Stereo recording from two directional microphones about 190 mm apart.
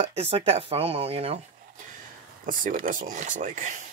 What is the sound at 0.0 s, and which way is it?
Speech, 30° right (ahead or behind).